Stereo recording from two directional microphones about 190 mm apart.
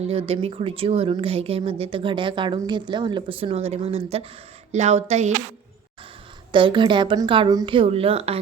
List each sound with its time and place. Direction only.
0.0 s speech: 30° right (ahead or behind)
6.5 s speech: 25° right (ahead or behind)